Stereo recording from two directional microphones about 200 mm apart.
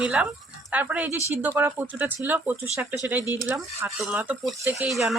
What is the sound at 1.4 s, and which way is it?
Speech, 10° right (ahead or behind).